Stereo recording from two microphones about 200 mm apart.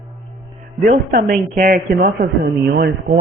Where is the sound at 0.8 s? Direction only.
45° right (ahead or behind).